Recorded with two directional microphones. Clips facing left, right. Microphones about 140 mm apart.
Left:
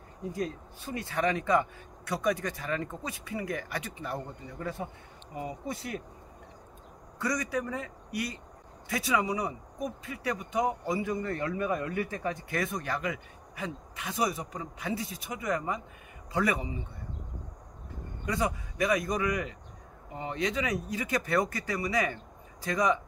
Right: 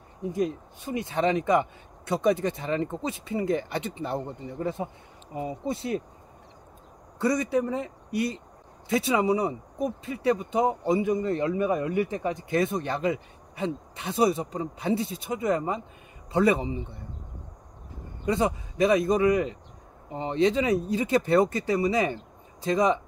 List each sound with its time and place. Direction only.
0.2 s speech: 20° right (ahead or behind)
7.2 s speech: 25° right (ahead or behind)
18.2 s speech: 25° right (ahead or behind)